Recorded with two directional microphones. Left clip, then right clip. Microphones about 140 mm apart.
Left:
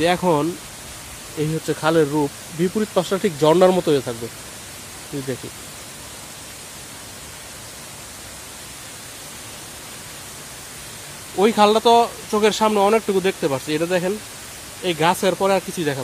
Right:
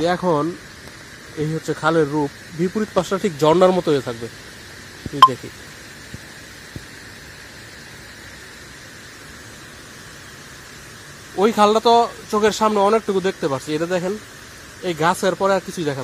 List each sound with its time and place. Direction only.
0.0 s speech: 15° left (ahead or behind)
1.7 s speech: 15° left (ahead or behind)
11.3 s speech: 5° left (ahead or behind)